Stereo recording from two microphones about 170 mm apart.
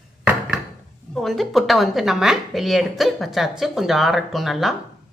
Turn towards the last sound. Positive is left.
turn(degrees=0)  # may be behind; listen again after turning